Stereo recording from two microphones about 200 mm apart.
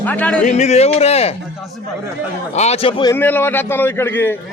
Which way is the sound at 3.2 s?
10° left (ahead or behind).